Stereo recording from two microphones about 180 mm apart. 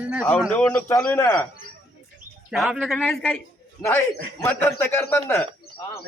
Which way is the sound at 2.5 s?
5° right (ahead or behind).